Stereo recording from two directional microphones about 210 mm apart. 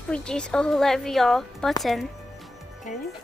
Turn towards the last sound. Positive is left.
turn(degrees=35)  # may be behind; listen again after turning